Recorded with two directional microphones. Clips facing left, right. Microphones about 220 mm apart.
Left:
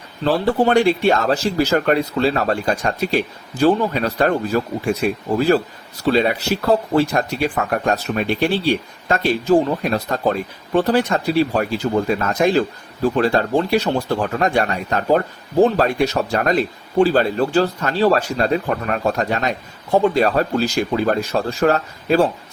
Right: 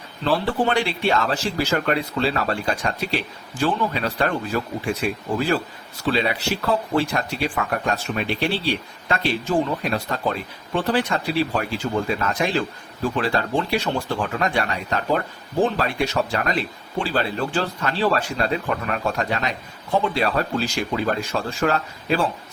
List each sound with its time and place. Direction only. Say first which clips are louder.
0.3 s speech: left 5 dB; 40° left (ahead or behind)